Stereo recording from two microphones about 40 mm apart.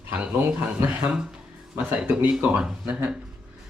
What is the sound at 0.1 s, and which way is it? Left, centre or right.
Speech, right.